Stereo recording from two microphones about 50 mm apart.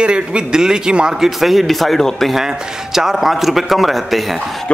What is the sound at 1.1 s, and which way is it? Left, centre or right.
A man's voice, centre.